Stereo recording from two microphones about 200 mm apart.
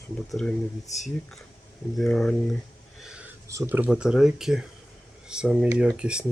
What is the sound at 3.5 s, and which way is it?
Speech, 10° right (ahead or behind).